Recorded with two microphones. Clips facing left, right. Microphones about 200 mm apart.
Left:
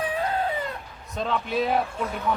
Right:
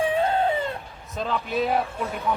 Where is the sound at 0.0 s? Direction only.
25° right (ahead or behind).